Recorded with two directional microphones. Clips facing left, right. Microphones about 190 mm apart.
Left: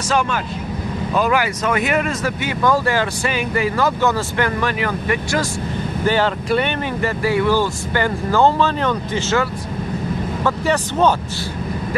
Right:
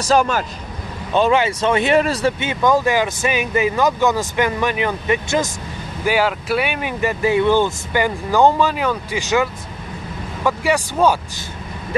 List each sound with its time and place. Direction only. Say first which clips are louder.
0.0 s speech: right 3 dB; 40° right (ahead or behind)
1.1 s speech: right 3 dB; 25° right (ahead or behind)
6.0 s speech: even; 10° right (ahead or behind)